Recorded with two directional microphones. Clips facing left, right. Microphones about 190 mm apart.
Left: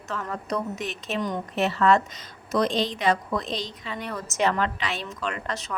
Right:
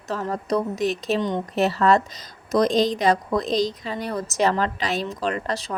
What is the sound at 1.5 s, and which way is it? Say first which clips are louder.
A woman's voice: right 2 dB; 40° right (ahead or behind).